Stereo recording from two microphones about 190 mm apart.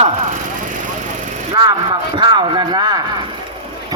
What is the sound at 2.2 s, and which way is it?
Speech, 25° right (ahead or behind).